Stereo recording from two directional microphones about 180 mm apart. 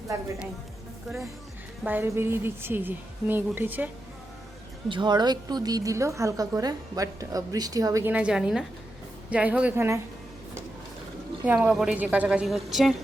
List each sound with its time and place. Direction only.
1.8 s a woman's voice: 10° right (ahead or behind)
4.9 s a woman's voice: 25° right (ahead or behind)
11.4 s a woman's voice: 5° right (ahead or behind)